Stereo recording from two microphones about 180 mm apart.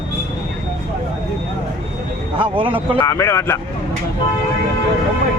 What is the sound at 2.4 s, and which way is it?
Speech, 30° right (ahead or behind).